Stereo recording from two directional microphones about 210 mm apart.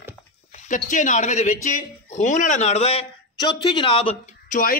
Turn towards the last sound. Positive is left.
turn(degrees=40)  # may be behind; listen again after turning